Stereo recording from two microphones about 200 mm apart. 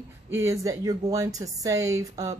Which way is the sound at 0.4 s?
15° right (ahead or behind).